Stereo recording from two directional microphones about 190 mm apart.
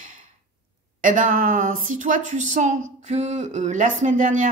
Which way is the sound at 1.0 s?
45° right (ahead or behind).